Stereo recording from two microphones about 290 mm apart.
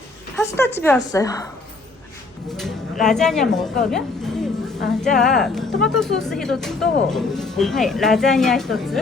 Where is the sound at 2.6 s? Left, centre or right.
Centre.